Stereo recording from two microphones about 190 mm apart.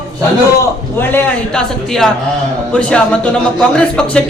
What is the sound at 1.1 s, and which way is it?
Speech, 5° left (ahead or behind).